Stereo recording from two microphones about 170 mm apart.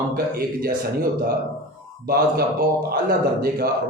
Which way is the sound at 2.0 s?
65° right (ahead or behind).